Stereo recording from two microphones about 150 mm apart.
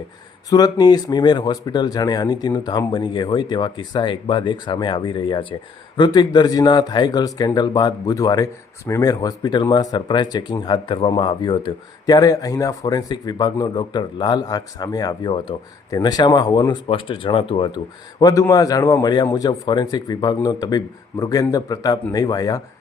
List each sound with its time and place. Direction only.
0.5 s speech: 25° left (ahead or behind)
18.2 s speech: 25° left (ahead or behind)